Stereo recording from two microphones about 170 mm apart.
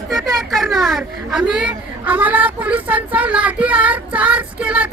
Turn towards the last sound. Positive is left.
turn(degrees=-5)  # may be behind; listen again after turning